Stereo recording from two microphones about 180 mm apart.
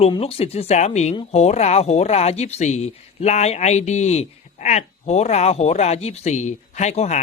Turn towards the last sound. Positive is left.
turn(degrees=40)  # may be behind; listen again after turning